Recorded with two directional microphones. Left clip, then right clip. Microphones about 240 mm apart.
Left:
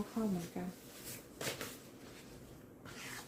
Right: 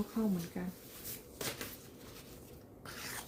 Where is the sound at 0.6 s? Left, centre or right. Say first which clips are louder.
Right 1 dB; centre.